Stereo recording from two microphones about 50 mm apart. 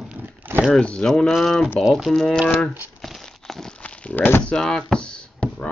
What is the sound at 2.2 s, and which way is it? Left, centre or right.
Speech, centre.